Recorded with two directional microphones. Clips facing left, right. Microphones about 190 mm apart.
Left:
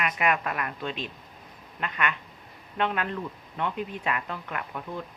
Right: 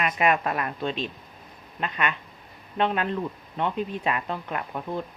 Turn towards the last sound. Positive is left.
turn(degrees=-25)  # may be behind; listen again after turning